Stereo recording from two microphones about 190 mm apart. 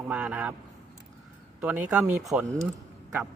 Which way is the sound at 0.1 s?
5° right (ahead or behind).